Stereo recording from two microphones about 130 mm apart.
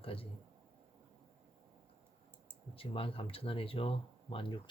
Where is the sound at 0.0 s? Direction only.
45° left (ahead or behind).